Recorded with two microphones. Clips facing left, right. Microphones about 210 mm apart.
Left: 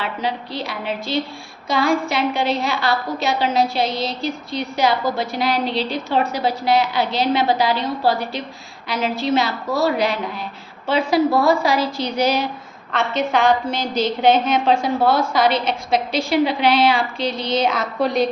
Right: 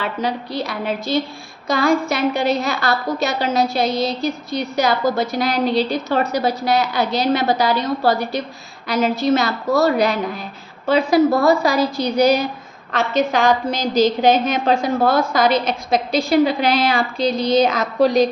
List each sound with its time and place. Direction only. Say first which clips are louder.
0.0 s a woman's voice: right 2 dB; 45° right (ahead or behind)